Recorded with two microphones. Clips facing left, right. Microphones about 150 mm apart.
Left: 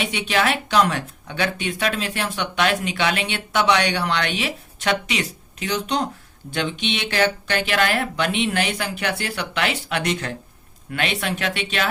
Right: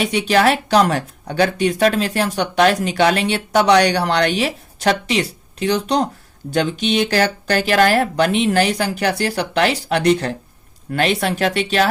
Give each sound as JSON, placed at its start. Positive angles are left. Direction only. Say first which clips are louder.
{"t": 0.0, "sound": "speech", "louder": "right 7 dB", "side_deg": -40}